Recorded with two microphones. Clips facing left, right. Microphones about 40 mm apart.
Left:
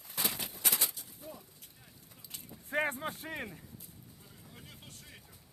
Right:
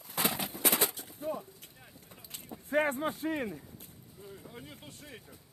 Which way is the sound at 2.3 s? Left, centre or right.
Right.